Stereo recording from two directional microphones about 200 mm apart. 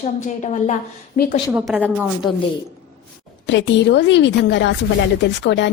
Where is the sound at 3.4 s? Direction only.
65° left (ahead or behind).